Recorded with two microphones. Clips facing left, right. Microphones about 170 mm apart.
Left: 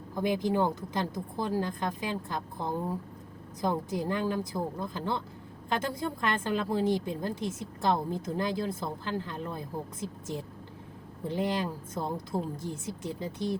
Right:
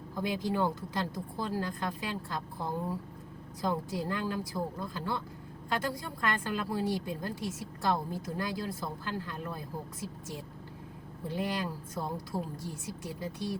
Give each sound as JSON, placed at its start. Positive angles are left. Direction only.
{"t": 0.2, "sound": "a woman's voice", "side_deg": 20}
{"t": 11.3, "sound": "a woman's voice", "side_deg": 20}